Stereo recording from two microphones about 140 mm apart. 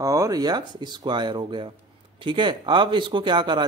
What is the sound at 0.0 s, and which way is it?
Speech, 25° right (ahead or behind).